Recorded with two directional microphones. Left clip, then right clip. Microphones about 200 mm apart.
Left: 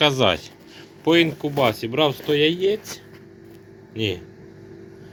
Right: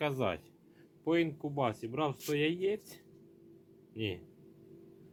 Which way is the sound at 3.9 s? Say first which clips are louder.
Left 13 dB; 5° right (ahead or behind).